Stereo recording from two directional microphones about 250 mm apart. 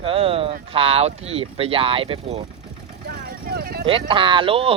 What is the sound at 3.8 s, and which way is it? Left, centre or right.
Speech, right.